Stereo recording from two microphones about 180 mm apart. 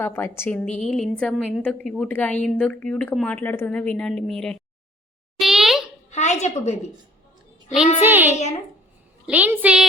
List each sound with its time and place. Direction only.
0.0 s a woman's voice: 10° left (ahead or behind)
5.4 s a sound: centre (ahead or behind)
6.1 s a woman's voice: 40° left (ahead or behind)
8.0 s a woman's voice: 10° right (ahead or behind)